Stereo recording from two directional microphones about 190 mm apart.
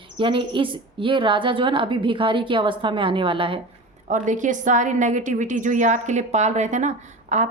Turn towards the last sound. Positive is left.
turn(degrees=-40)  # may be behind; listen again after turning